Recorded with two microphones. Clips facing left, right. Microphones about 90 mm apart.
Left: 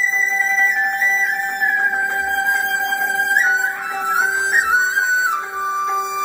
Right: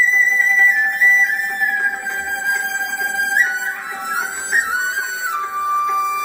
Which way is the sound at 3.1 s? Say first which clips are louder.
Left 1 dB; 25° left (ahead or behind).